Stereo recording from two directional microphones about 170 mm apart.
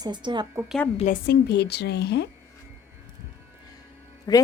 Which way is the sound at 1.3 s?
75° left (ahead or behind).